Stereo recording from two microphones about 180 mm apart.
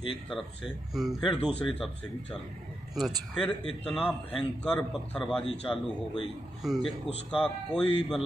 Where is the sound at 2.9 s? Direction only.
Centre (ahead or behind).